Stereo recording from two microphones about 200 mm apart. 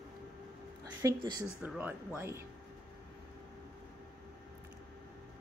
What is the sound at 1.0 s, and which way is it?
A woman's voice, 15° right (ahead or behind).